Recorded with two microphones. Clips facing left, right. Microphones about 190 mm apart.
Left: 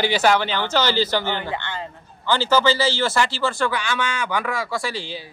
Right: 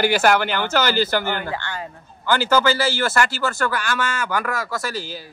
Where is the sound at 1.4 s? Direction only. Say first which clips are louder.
Even; 20° left (ahead or behind).